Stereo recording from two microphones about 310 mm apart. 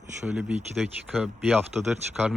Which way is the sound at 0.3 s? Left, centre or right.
Centre.